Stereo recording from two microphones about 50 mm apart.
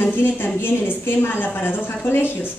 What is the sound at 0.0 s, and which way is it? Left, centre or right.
A woman's voice, left.